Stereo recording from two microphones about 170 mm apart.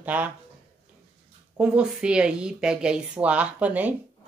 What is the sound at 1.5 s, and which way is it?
Speech, 5° right (ahead or behind).